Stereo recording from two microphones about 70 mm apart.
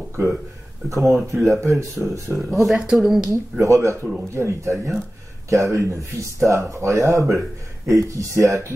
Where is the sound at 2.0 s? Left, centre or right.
Right.